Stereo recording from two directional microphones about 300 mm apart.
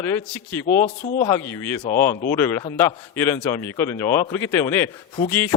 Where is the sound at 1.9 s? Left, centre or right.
Left.